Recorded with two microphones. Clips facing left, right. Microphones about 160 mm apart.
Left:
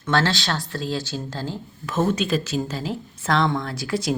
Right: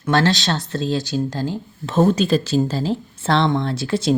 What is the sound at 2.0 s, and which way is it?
A woman's voice, 35° right (ahead or behind).